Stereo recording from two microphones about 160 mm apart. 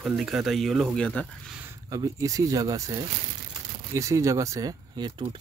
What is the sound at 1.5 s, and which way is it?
Speech, 15° right (ahead or behind).